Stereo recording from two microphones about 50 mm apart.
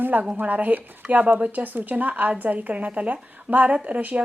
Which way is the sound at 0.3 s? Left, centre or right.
Right.